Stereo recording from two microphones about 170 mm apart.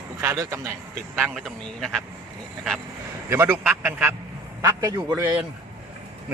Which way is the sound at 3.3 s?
15° right (ahead or behind).